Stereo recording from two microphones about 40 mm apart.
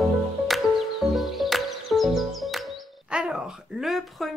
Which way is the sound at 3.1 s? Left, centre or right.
Right.